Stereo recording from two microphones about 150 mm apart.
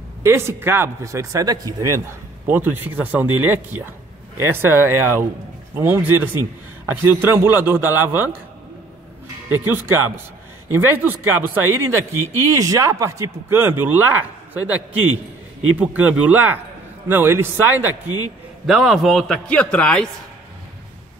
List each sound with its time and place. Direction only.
0.2 s speech: 15° right (ahead or behind)
9.5 s speech: 15° right (ahead or behind)
15.8 s speech: 10° right (ahead or behind)
18.7 s a man's voice: centre (ahead or behind)